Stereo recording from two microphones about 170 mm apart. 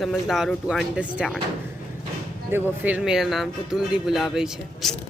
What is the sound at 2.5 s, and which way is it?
Speech, 10° right (ahead or behind).